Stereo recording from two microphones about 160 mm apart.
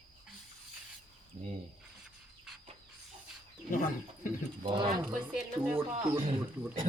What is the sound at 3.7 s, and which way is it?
Wild animals, 55° left (ahead or behind).